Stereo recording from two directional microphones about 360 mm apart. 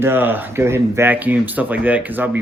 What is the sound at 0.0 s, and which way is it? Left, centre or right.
Speech, centre.